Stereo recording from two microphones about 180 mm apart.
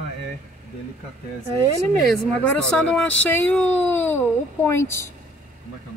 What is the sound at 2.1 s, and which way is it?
Speech, 5° left (ahead or behind).